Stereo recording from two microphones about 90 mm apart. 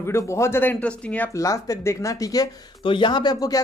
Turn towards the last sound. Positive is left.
turn(degrees=50)  # may be behind; listen again after turning